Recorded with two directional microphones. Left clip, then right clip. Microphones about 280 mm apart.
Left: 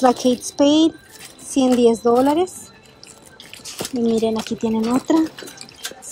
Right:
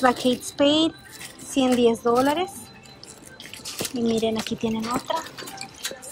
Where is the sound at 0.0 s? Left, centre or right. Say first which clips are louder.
Left 4 dB; centre.